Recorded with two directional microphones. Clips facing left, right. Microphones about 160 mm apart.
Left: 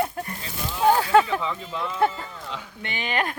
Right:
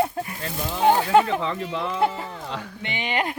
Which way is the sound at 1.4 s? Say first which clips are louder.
Right 3 dB; 75° right (ahead or behind).